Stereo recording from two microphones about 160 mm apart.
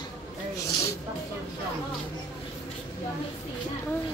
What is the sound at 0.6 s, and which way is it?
Speech, 20° left (ahead or behind).